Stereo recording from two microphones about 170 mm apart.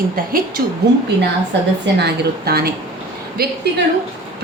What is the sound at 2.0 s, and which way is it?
A woman's voice, 65° right (ahead or behind).